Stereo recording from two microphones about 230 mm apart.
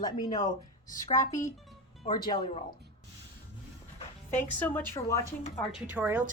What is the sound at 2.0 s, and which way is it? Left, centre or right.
Speech, centre.